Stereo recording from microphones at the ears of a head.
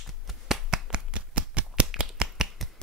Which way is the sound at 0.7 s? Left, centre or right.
Right.